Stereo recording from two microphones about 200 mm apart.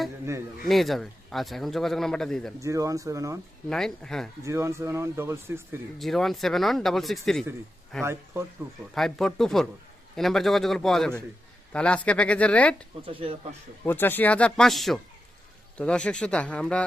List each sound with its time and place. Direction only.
0.6 s speech: centre (ahead or behind)
2.6 s speech: 15° right (ahead or behind)
3.7 s speech: 5° left (ahead or behind)
4.4 s speech: 15° right (ahead or behind)
6.0 s speech: centre (ahead or behind)
8.0 s speech: 10° right (ahead or behind)
9.0 s speech: centre (ahead or behind)
13.1 s speech: 30° right (ahead or behind)
13.8 s speech: 10° left (ahead or behind)